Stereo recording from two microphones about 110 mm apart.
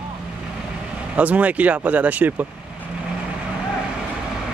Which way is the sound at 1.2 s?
15° right (ahead or behind).